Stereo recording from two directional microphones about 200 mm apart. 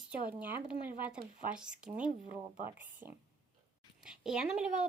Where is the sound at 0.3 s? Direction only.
10° right (ahead or behind).